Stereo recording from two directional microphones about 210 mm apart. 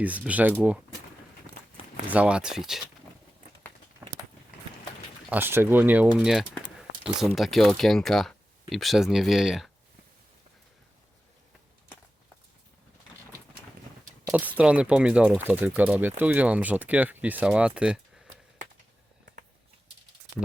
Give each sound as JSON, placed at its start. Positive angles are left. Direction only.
{"t": 0.0, "sound": "speech", "side_deg": -5}
{"t": 2.0, "sound": "speech", "side_deg": -5}
{"t": 4.0, "sound": "a sound", "side_deg": -10}
{"t": 5.3, "sound": "speech", "side_deg": -10}
{"t": 14.3, "sound": "a sound", "side_deg": -5}
{"t": 14.6, "sound": "speech", "side_deg": -5}